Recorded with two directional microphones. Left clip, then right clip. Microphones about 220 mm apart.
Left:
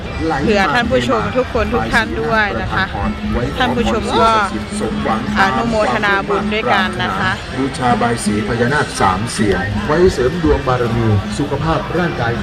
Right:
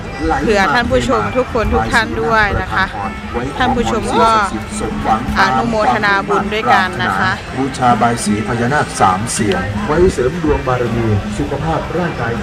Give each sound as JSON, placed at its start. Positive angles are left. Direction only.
{"t": 0.3, "sound": "speech", "side_deg": -5}
{"t": 4.2, "sound": "speech", "side_deg": 0}
{"t": 7.8, "sound": "speech", "side_deg": -40}
{"t": 8.7, "sound": "speech", "side_deg": -30}